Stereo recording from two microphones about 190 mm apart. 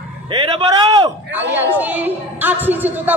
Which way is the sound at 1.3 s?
10° right (ahead or behind).